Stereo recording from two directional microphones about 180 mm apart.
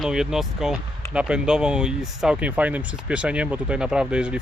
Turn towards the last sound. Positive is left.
turn(degrees=-5)  # may be behind; listen again after turning